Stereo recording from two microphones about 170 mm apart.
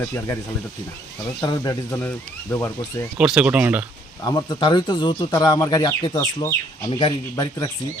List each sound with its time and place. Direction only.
1.4 s speech: 20° left (ahead or behind)
3.2 s speech: 5° right (ahead or behind)
4.2 s speech: 20° left (ahead or behind)